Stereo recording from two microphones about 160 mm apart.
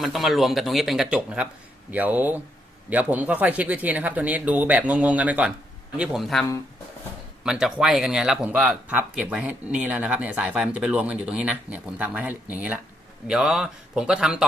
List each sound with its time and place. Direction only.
0.0 s speech: centre (ahead or behind)
7.4 s speech: 5° right (ahead or behind)